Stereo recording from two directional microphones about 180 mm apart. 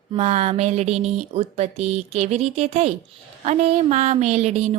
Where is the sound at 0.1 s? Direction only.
35° right (ahead or behind).